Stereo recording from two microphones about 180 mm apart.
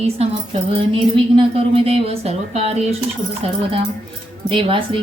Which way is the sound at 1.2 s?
30° right (ahead or behind).